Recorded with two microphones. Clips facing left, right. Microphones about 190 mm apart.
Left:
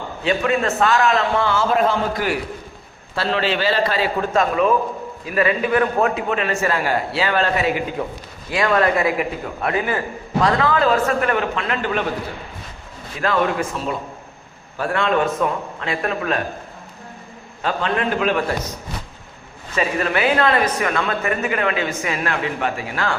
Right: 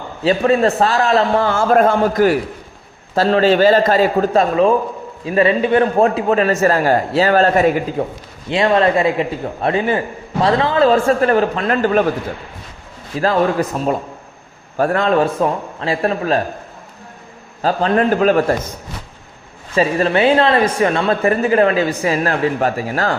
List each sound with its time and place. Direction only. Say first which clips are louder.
0.3 s a man's voice: right 6 dB; 35° right (ahead or behind)
8.4 s a man's voice: right 4 dB; 25° right (ahead or behind); by 12.0 s 40° right (ahead or behind)
13.1 s speech: right 5 dB; 35° right (ahead or behind)
17.6 s speech: right 6 dB; 35° right (ahead or behind)
19.7 s speech: right 6 dB; 30° right (ahead or behind)